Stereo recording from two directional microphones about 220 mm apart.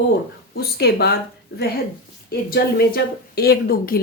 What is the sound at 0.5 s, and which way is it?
A woman's voice, 45° left (ahead or behind).